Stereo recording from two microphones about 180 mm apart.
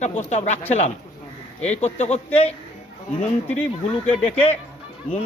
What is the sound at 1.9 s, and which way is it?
Speech, 40° left (ahead or behind).